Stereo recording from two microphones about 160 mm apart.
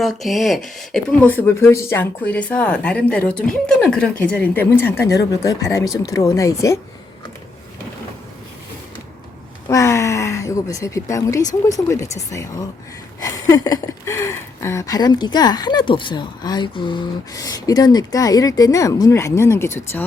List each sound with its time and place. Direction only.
0.0 s speech: centre (ahead or behind); by 6.7 s 20° left (ahead or behind)
9.6 s speech: 20° left (ahead or behind)